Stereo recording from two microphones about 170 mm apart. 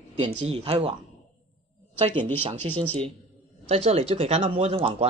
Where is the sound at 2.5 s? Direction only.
30° right (ahead or behind).